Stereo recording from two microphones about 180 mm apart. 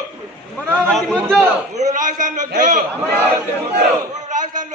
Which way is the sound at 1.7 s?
45° right (ahead or behind).